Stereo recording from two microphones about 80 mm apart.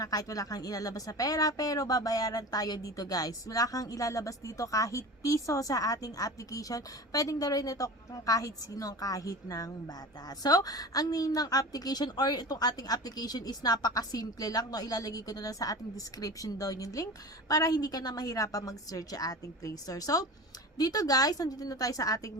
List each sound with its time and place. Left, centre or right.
0.0 s speech: left